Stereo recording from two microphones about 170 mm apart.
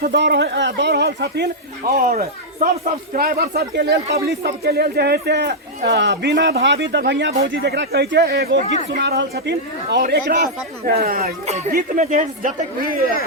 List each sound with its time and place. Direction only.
0.0 s speech: 85° right
1.9 s speech: 55° right (ahead or behind)
9.0 s speech: 80° right
10.1 s speech: 70° right (ahead or behind)